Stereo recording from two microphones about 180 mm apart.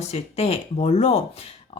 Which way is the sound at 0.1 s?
35° left (ahead or behind).